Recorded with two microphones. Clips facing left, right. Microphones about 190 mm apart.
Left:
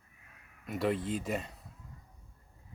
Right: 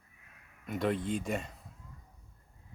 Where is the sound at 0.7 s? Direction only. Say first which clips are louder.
Even; 5° left (ahead or behind).